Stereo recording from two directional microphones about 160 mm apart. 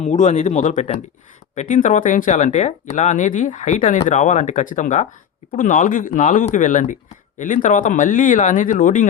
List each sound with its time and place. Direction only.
0.0 s speech: 50° left (ahead or behind)